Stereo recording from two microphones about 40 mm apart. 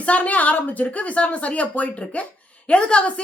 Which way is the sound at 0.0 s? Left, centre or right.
Left.